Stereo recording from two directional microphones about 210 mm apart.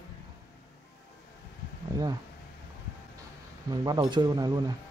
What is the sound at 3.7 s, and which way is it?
Speech, 20° right (ahead or behind).